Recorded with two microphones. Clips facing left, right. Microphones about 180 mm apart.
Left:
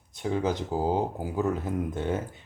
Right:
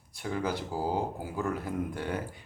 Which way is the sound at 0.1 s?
20° left (ahead or behind).